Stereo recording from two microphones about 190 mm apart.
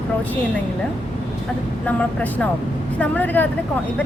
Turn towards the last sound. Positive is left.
turn(degrees=10)  # may be behind; listen again after turning